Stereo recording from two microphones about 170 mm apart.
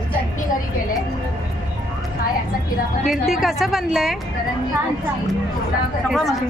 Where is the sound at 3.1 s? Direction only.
Centre (ahead or behind).